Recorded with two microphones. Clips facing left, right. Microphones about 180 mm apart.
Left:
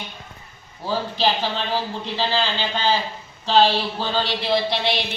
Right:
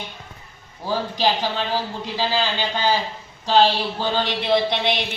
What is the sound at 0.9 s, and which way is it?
Speech, 15° right (ahead or behind).